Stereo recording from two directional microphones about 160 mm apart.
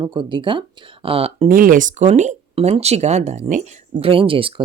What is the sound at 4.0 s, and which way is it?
Speech, 35° right (ahead or behind).